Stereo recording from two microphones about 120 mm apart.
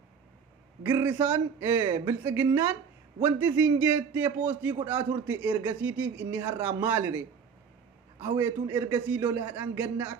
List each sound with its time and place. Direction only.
0.8 s a man's voice: 20° right (ahead or behind)